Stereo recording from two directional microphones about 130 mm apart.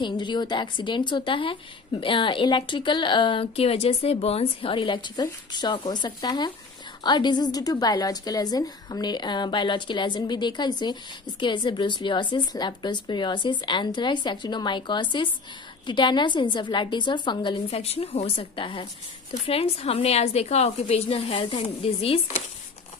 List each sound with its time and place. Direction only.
0.0 s a woman's voice: 35° left (ahead or behind)